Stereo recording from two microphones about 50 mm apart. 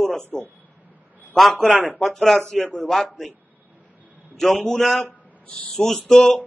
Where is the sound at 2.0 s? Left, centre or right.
Centre.